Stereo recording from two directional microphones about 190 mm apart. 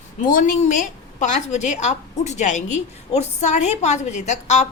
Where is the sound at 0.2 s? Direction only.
45° left (ahead or behind).